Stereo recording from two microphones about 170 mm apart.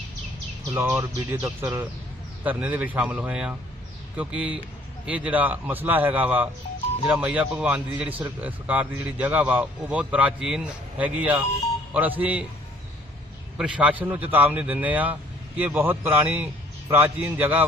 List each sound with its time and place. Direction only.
0.7 s a man's voice: 15° right (ahead or behind)
13.6 s a man's voice: 5° right (ahead or behind)